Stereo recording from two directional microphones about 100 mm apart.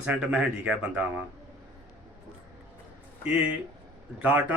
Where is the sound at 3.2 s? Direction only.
15° right (ahead or behind).